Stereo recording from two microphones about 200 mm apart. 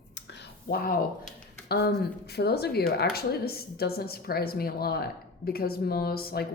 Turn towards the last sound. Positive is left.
turn(degrees=50)  # may be behind; listen again after turning